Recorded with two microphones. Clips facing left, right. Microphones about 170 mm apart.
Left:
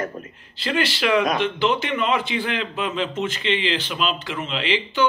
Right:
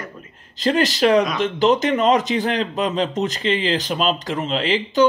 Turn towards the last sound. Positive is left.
turn(degrees=-40)  # may be behind; listen again after turning